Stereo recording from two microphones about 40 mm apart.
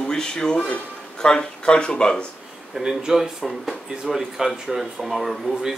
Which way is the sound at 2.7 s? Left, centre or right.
Centre.